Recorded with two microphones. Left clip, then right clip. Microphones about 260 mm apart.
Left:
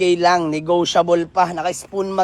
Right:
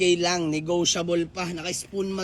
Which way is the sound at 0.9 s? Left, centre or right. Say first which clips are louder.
Left 12 dB; left.